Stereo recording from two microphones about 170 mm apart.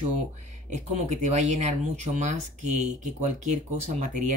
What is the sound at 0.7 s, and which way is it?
Speech, 45° right (ahead or behind).